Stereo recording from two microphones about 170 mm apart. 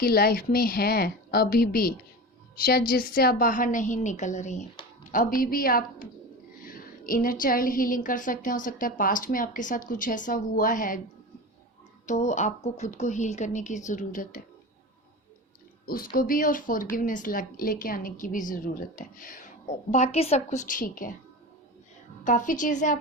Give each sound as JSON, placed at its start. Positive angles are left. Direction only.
{"t": 0.0, "sound": "a woman's voice", "side_deg": 65}
{"t": 5.4, "sound": "a woman's voice", "side_deg": 60}
{"t": 12.0, "sound": "a woman's voice", "side_deg": 45}
{"t": 15.9, "sound": "a woman's voice", "side_deg": 60}
{"t": 22.2, "sound": "a woman's voice", "side_deg": 50}